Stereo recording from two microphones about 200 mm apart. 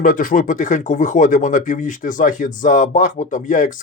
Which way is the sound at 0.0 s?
45° left (ahead or behind).